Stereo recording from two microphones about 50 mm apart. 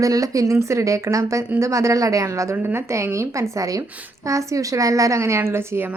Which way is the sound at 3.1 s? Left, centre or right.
Right.